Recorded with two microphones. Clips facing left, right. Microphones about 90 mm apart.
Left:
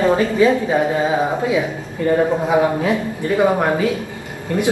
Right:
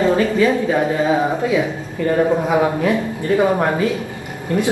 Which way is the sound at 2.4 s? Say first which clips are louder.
Even; 20° left (ahead or behind).